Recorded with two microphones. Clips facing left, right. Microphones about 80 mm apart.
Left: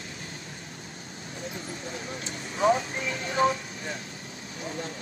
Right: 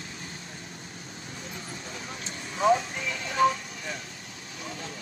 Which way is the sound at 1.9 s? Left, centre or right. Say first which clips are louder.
Left 3 dB; left.